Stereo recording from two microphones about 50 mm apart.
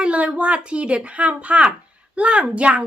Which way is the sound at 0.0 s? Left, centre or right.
Right.